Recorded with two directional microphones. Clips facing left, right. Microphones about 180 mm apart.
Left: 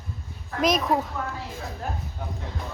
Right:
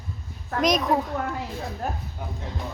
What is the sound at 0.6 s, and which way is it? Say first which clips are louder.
Speech: even; centre (ahead or behind).